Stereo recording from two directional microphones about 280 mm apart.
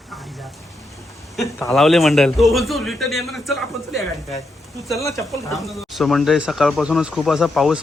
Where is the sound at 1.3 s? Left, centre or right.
Centre.